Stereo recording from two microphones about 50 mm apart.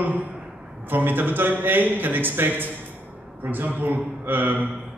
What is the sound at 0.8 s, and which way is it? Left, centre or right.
Speech, right.